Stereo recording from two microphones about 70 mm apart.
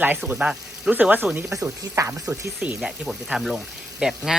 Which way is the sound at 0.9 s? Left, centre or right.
Right.